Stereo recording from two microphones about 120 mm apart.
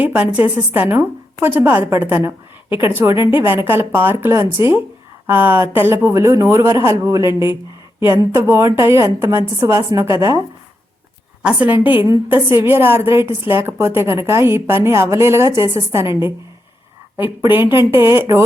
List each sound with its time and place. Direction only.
0.0 s a woman's voice: 10° right (ahead or behind)
11.4 s a woman's voice: 10° right (ahead or behind)